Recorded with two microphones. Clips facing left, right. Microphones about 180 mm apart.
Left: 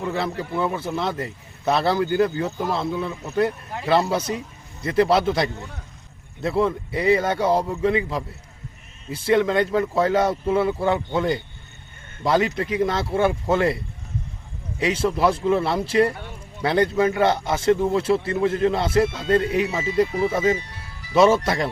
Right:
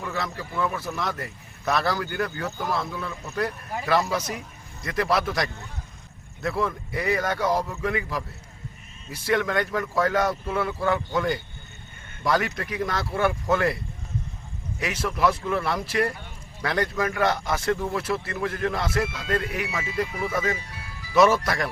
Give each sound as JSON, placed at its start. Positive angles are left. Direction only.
{"t": 0.0, "sound": "a man's voice", "side_deg": 30}
{"t": 14.8, "sound": "a man's voice", "side_deg": 25}